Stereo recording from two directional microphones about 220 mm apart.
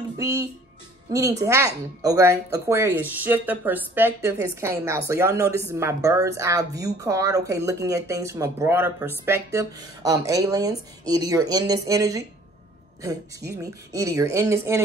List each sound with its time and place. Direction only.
0.2 s speech: 15° right (ahead or behind)
13.5 s speech: 15° right (ahead or behind)